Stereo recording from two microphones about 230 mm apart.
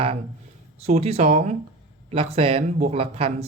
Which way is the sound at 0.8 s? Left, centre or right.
Right.